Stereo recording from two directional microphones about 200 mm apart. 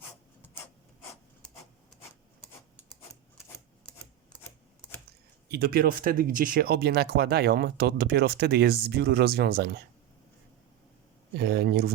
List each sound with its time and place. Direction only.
5.5 s speech: 50° right (ahead or behind)
11.3 s speech: 55° right (ahead or behind)